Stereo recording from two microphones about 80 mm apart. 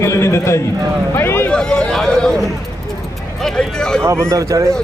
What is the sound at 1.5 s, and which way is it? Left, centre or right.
Speech, centre.